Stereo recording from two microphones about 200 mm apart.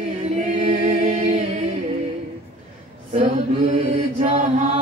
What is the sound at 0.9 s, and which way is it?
Humming, 40° right (ahead or behind).